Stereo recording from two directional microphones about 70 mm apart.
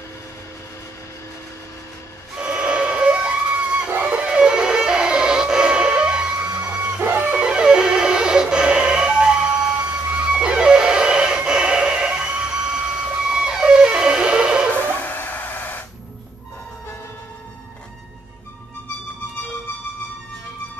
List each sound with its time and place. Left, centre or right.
2.3 s a sound: centre
3.9 s music: centre
14.7 s music: left